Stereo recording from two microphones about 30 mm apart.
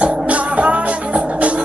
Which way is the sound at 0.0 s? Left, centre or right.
Right.